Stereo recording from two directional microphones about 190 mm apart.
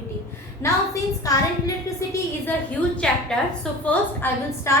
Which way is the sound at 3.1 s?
5° left (ahead or behind).